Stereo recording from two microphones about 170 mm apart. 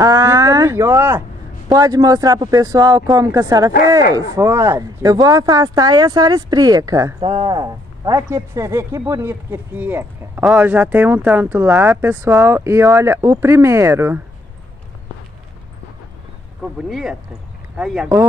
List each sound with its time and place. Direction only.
0.0 s a sound: 20° right (ahead or behind)
1.7 s speech: 20° right (ahead or behind)
16.9 s speech: 5° right (ahead or behind)